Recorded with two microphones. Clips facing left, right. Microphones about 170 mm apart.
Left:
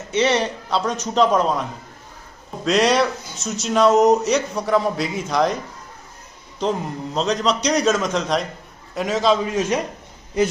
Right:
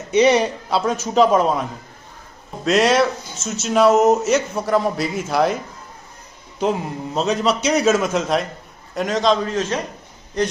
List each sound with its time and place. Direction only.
0.1 s speech: 15° right (ahead or behind)
2.6 s speech: centre (ahead or behind)
6.6 s a man's voice: 5° right (ahead or behind); by 10.5 s 10° left (ahead or behind)